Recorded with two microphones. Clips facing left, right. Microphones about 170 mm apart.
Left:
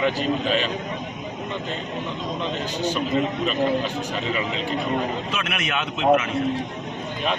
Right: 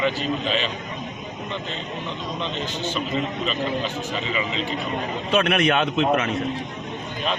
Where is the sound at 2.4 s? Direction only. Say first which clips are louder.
Left 3 dB; 10° left (ahead or behind).